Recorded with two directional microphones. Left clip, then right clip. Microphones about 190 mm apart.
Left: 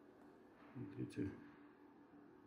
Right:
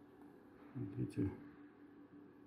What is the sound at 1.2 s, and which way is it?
Speech, 20° right (ahead or behind).